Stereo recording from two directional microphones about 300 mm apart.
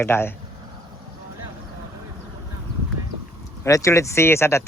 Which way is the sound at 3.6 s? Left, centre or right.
Centre.